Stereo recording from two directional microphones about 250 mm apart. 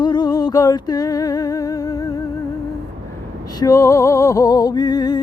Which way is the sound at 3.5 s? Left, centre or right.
Centre.